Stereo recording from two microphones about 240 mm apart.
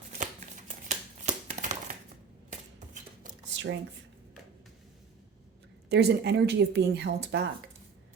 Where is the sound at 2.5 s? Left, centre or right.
Right.